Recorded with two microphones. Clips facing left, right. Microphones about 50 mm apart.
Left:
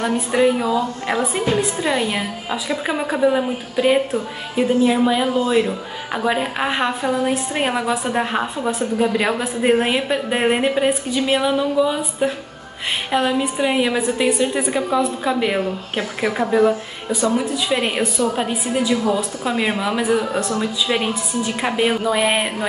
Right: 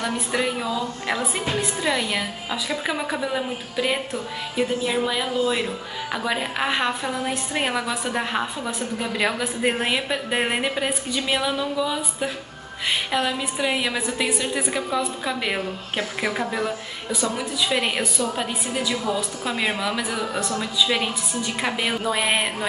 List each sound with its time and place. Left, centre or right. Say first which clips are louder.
0.0 s a woman's voice: left 7 dB; centre
19.0 s a woman's voice: left 5 dB; centre